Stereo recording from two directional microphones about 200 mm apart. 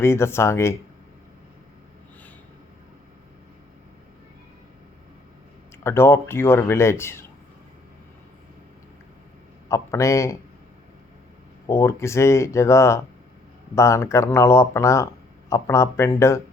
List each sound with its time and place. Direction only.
0.0 s speech: 10° left (ahead or behind)
5.8 s speech: 10° left (ahead or behind)
9.6 s speech: 15° left (ahead or behind)
11.6 s speech: 15° left (ahead or behind)